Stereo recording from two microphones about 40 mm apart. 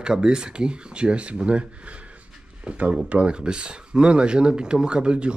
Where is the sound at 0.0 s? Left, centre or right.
Centre.